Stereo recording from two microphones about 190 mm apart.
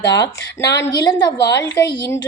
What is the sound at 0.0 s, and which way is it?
A woman's voice, 20° left (ahead or behind).